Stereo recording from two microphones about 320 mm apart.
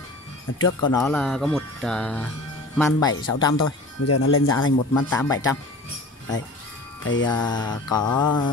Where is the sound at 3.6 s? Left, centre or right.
Left.